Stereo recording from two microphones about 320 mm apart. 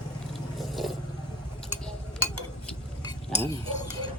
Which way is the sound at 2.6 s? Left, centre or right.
Centre.